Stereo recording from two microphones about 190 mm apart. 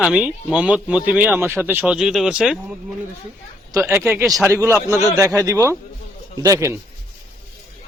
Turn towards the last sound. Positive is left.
turn(degrees=-15)  # may be behind; listen again after turning